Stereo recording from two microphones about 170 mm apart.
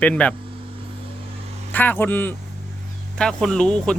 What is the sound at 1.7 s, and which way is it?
Speech, 10° left (ahead or behind).